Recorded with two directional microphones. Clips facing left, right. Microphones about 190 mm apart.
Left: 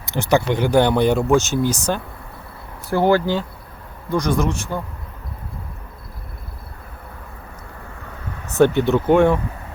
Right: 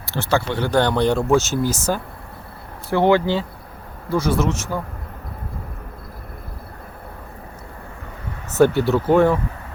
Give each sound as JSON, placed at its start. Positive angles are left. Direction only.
{"t": 0.0, "sound": "speech", "side_deg": 15}
{"t": 1.3, "sound": "speech", "side_deg": 0}
{"t": 8.5, "sound": "speech", "side_deg": -5}